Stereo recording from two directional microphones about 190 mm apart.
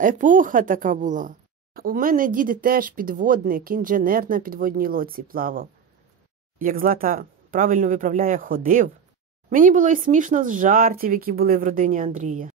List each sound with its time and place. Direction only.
0.0 s a woman's voice: 45° right (ahead or behind)